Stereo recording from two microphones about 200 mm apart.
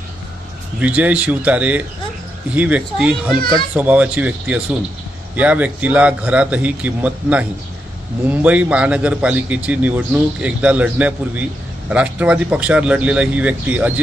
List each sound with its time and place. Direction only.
0.7 s a man's voice: 5° right (ahead or behind)
3.3 s a child's voice: 25° left (ahead or behind)
3.7 s a man's voice: 5° right (ahead or behind)